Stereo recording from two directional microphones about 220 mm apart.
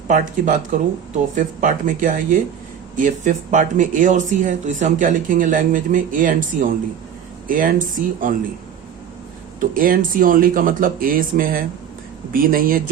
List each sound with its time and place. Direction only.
0.1 s speech: 35° right (ahead or behind)
9.6 s speech: 40° right (ahead or behind)